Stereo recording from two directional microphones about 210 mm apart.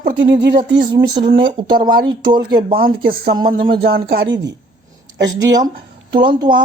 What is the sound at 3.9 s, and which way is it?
Speech, 50° right (ahead or behind).